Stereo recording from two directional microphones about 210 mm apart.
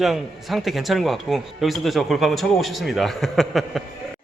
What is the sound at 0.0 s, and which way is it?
Speech, centre (ahead or behind).